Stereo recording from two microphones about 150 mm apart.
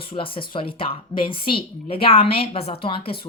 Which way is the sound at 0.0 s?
35° left (ahead or behind).